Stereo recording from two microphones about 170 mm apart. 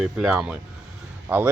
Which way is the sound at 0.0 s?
5° right (ahead or behind).